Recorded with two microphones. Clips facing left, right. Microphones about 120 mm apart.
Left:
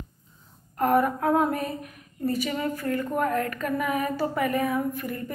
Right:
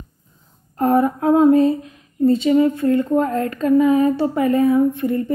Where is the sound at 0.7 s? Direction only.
30° right (ahead or behind).